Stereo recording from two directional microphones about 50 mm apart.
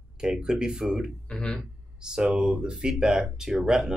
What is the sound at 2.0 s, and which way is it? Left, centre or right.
Speech, centre.